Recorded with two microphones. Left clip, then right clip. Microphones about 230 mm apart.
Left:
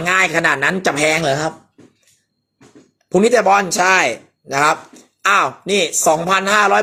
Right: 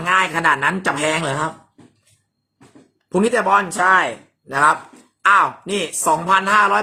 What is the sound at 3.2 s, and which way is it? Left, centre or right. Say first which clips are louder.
Speech: left 3 dB; centre.